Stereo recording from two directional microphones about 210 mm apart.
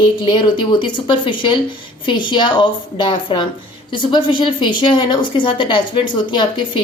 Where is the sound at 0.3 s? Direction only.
20° left (ahead or behind).